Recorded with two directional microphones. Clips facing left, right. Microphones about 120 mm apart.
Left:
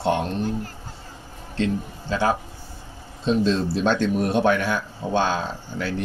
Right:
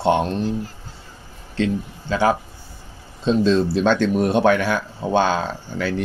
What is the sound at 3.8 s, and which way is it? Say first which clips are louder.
Speech: right 3 dB; 90° right.